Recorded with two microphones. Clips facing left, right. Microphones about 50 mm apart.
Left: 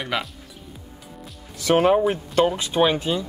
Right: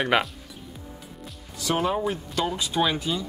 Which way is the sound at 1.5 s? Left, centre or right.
Left.